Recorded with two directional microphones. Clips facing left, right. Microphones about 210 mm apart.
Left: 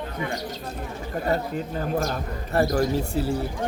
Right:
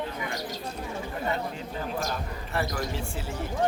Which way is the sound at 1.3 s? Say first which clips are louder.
Left 8 dB; 45° left (ahead or behind).